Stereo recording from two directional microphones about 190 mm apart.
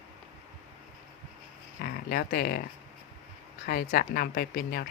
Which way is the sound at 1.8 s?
55° left (ahead or behind).